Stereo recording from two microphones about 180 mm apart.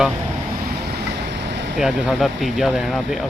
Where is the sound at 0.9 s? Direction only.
70° right (ahead or behind).